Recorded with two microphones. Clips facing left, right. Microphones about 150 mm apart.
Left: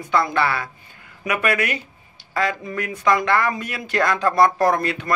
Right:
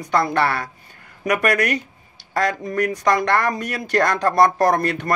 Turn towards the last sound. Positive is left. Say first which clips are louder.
# right 1 dB
turn(degrees=-40)  # may be behind; listen again after turning